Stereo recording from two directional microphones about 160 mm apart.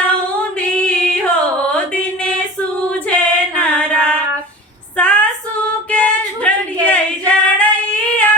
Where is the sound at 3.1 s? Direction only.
10° left (ahead or behind).